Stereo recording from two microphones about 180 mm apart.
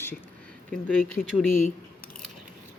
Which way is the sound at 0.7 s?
5° left (ahead or behind).